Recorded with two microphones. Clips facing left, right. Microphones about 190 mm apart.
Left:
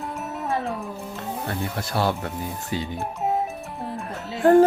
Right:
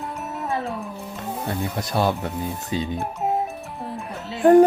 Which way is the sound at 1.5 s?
20° right (ahead or behind).